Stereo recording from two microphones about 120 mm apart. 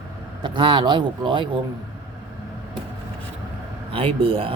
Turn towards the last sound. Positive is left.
turn(degrees=-50)  # may be behind; listen again after turning